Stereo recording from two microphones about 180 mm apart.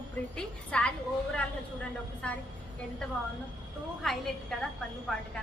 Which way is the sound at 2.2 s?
5° left (ahead or behind).